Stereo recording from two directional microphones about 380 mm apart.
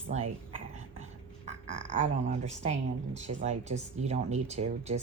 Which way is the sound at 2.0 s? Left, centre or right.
Centre.